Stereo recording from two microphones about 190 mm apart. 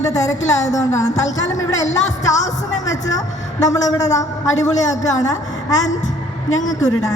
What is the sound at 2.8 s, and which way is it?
A woman's voice, 20° left (ahead or behind).